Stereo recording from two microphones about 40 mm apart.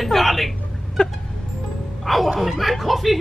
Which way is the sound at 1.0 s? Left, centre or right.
Centre.